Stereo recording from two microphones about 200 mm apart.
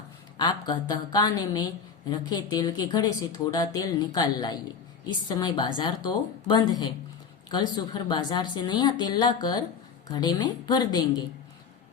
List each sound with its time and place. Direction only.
0.3 s a woman's voice: 20° left (ahead or behind)